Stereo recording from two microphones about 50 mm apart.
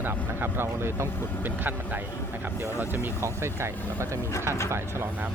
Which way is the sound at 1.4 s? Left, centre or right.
Right.